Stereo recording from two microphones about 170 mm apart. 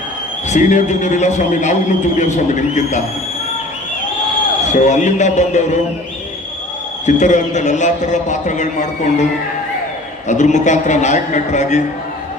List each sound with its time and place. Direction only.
0.4 s a man's voice: 45° left (ahead or behind)
4.7 s a man's voice: 45° left (ahead or behind)
7.0 s a man's voice: 45° left (ahead or behind)
10.2 s a man's voice: 45° left (ahead or behind)